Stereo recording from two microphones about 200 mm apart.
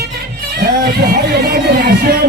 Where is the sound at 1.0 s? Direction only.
50° right (ahead or behind).